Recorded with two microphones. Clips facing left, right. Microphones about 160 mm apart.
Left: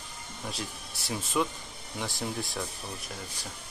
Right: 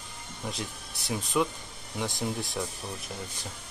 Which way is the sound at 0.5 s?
20° right (ahead or behind).